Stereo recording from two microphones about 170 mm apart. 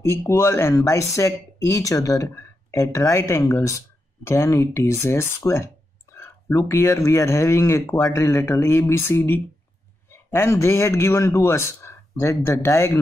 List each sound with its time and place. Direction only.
0.0 s speech: 15° left (ahead or behind)